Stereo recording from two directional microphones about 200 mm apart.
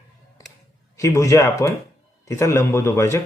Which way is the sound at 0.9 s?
15° left (ahead or behind).